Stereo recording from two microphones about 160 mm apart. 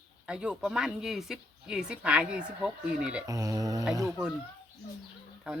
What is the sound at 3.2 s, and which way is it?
Speech, 20° right (ahead or behind).